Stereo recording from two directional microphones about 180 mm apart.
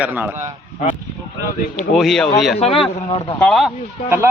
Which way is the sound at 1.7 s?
Centre (ahead or behind).